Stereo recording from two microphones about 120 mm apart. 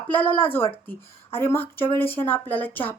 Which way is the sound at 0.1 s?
15° left (ahead or behind).